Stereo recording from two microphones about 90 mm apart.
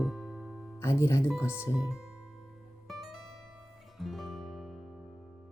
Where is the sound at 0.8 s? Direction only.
30° left (ahead or behind).